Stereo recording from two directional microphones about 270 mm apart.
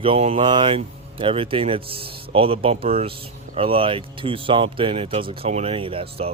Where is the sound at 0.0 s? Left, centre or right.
Right.